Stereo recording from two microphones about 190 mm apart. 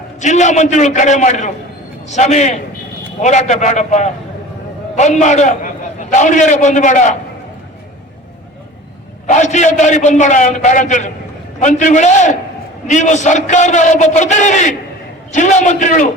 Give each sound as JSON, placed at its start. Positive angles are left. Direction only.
{"t": 0.2, "sound": "a man's voice", "side_deg": 40}
{"t": 9.2, "sound": "a man's voice", "side_deg": 40}